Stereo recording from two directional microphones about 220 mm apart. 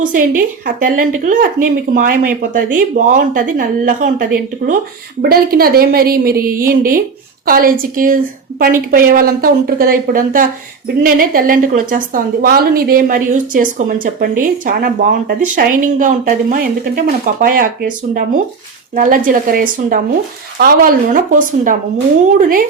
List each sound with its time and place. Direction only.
0.0 s a woman's voice: 40° right (ahead or behind)
5.3 s a woman's voice: 45° right (ahead or behind)